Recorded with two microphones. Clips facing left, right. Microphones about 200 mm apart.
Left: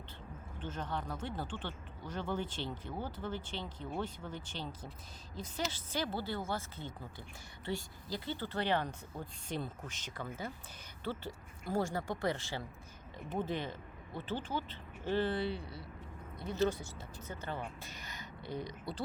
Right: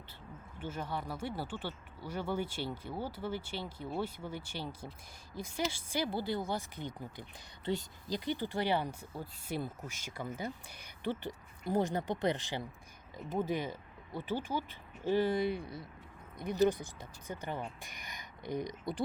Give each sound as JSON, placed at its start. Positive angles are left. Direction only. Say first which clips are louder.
{"t": 0.6, "sound": "speech", "louder": "right 1 dB", "side_deg": -10}